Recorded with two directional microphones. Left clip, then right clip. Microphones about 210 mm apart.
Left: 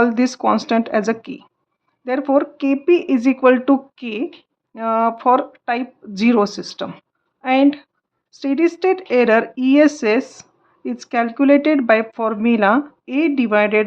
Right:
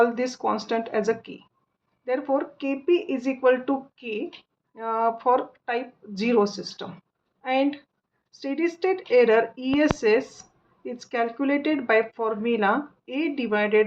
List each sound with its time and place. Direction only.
0.0 s speech: 40° left (ahead or behind)